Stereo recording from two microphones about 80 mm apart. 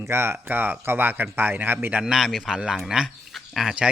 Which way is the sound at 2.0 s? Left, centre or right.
Centre.